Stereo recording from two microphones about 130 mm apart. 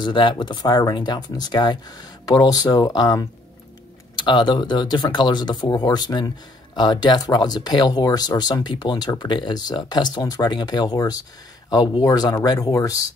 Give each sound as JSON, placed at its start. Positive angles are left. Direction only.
{"t": 0.0, "sound": "speech", "side_deg": 40}